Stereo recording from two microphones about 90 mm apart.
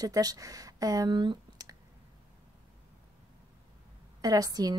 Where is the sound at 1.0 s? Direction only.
55° right (ahead or behind).